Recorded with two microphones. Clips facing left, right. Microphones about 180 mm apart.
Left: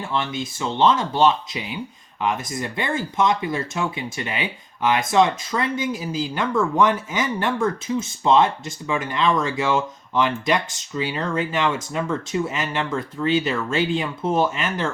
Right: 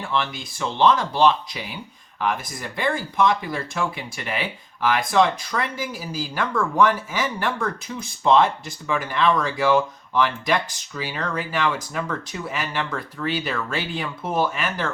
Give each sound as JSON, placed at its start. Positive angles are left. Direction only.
{"t": 0.3, "sound": "speech", "side_deg": 20}